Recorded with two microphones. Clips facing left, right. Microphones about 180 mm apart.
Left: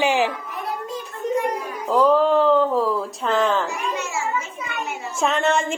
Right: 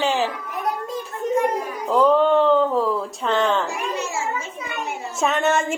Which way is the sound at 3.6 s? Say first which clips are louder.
Right 1 dB; 30° right (ahead or behind).